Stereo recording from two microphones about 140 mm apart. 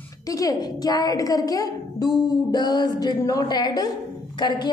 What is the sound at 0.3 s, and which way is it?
A woman's voice, 25° left (ahead or behind).